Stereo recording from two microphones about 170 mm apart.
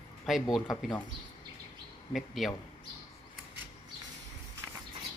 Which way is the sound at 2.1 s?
Centre (ahead or behind).